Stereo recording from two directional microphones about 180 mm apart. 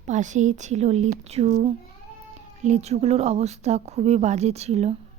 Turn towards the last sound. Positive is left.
turn(degrees=-35)  # may be behind; listen again after turning